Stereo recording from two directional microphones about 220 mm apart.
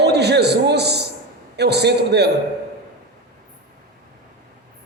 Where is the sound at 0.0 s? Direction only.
50° right (ahead or behind).